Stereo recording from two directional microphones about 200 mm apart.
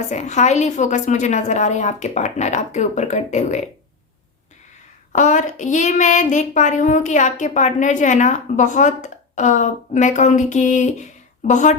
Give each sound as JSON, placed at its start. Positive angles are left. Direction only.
{"t": 0.0, "sound": "speech", "side_deg": 35}
{"t": 5.1, "sound": "speech", "side_deg": 40}